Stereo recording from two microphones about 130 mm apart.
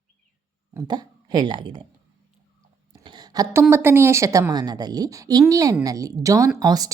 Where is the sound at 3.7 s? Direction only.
20° right (ahead or behind).